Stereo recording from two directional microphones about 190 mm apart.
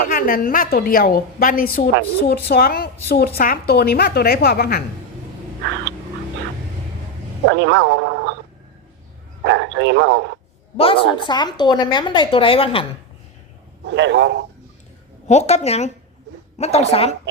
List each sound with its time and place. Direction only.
0.1 s a woman's voice: 50° left (ahead or behind)
7.4 s speech: 70° right (ahead or behind)
9.6 s speech: 70° right (ahead or behind)
10.8 s a woman's voice: 30° left (ahead or behind)
13.8 s speech: 70° right (ahead or behind)
15.3 s a woman's voice: 35° left (ahead or behind)